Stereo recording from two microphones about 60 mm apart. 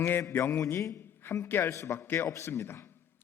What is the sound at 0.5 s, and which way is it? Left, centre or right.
Speech, left.